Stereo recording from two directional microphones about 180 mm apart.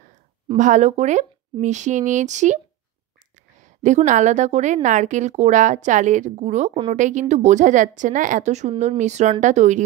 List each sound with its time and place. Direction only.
0.6 s a woman's voice: 45° right (ahead or behind)
3.6 s a woman's voice: 45° right (ahead or behind)